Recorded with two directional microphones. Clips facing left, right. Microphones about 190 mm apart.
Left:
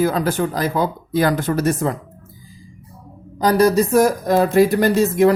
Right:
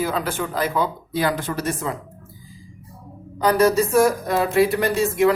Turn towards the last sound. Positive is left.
turn(degrees=40)  # may be behind; listen again after turning